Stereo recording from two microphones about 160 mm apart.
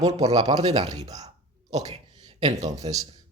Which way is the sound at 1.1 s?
45° right (ahead or behind).